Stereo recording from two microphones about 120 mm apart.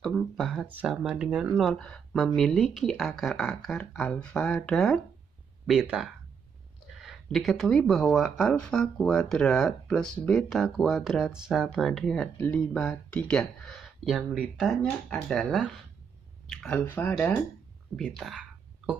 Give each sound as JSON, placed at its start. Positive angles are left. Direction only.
{"t": 0.0, "sound": "speech", "side_deg": 0}
{"t": 1.5, "sound": "speech", "side_deg": 5}
{"t": 14.8, "sound": "speech", "side_deg": 10}
{"t": 16.9, "sound": "speech", "side_deg": 15}
{"t": 17.9, "sound": "speech", "side_deg": 0}